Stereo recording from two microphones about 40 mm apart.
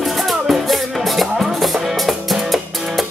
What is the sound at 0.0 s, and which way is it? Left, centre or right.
Music, centre.